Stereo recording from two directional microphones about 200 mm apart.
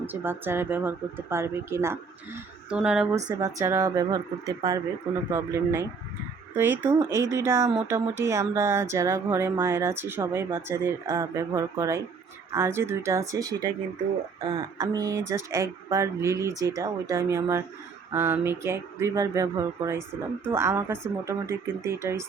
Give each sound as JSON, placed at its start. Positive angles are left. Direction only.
{"t": 0.0, "sound": "speech", "side_deg": -10}
{"t": 3.2, "sound": "speech", "side_deg": -15}